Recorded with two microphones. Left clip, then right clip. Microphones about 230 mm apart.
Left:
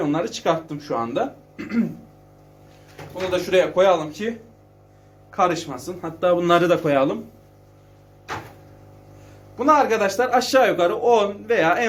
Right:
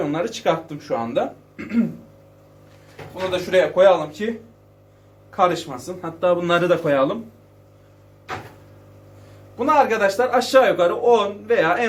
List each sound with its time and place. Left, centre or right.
0.0 s speech: centre
3.3 s speech: left
5.4 s speech: left
9.6 s speech: left